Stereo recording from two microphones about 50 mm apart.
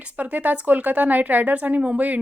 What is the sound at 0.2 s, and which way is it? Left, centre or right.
Speech, right.